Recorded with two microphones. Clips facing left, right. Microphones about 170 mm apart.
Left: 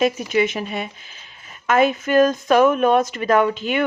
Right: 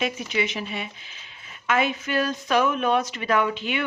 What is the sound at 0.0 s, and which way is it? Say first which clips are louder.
A woman's voice: left 8 dB; 45° left (ahead or behind).